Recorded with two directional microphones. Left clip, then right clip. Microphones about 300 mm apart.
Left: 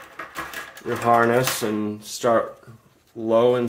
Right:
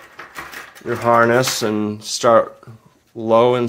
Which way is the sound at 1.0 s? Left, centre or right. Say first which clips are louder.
Right 4 dB; right.